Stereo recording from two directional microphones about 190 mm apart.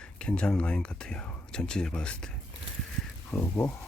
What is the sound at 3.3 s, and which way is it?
Speech, 10° left (ahead or behind).